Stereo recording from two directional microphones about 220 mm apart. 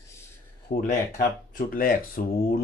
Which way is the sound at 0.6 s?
40° left (ahead or behind).